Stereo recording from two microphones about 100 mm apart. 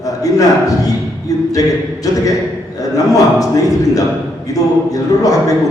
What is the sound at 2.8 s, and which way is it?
Speech, 35° left (ahead or behind).